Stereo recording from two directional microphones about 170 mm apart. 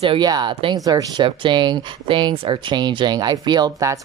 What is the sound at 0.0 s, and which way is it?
Speech, 25° right (ahead or behind).